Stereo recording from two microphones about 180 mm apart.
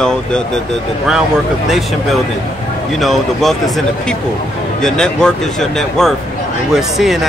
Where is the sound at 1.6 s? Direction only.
Centre (ahead or behind).